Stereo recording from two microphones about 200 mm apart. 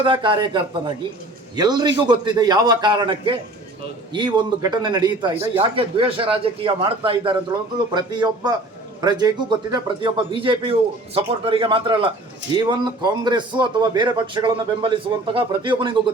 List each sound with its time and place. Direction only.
0.0 s a man's voice: 25° right (ahead or behind)